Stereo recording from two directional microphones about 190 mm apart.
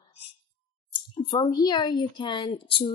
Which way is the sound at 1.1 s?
25° left (ahead or behind).